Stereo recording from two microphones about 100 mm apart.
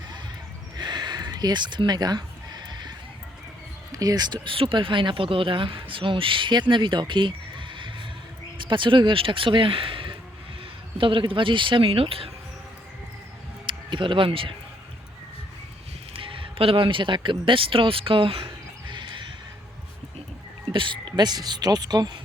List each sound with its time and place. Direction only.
0.8 s a sound: 45° right (ahead or behind)
3.9 s speech: 40° right (ahead or behind); by 12.3 s 70° right (ahead or behind)
13.7 s speech: 55° right (ahead or behind)
16.1 s speech: 65° right (ahead or behind)
20.7 s speech: 55° right (ahead or behind)